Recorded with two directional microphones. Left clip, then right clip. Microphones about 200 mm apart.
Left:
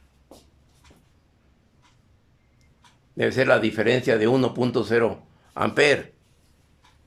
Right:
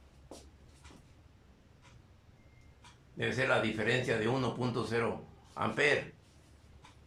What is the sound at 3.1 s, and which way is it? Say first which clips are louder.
A man's voice: left 11 dB; 55° left (ahead or behind).